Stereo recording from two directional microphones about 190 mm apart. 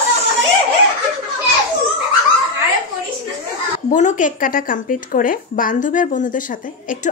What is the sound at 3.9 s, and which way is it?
Speech, 40° left (ahead or behind).